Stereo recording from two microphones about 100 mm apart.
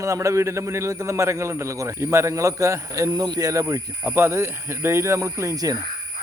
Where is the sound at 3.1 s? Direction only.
45° right (ahead or behind).